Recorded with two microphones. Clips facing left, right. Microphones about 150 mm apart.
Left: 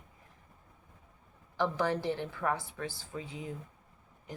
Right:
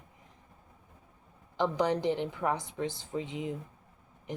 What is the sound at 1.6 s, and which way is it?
Speech, 20° right (ahead or behind).